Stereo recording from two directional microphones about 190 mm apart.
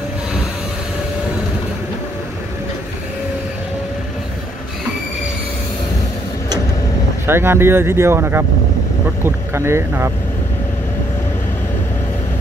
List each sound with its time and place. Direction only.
7.2 s speech: 10° right (ahead or behind)